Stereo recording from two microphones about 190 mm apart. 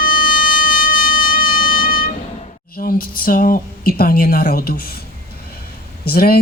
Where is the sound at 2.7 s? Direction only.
50° left (ahead or behind).